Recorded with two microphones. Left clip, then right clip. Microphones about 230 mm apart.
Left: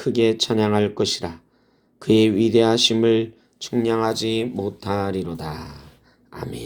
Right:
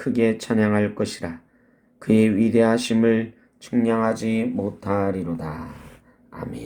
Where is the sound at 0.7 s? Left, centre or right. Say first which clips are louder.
Left 2 dB; left.